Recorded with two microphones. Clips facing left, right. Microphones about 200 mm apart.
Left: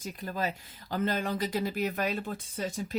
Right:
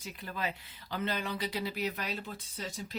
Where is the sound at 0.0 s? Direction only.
40° left (ahead or behind).